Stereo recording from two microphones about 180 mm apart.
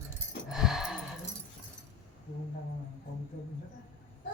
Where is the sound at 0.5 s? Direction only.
Centre (ahead or behind).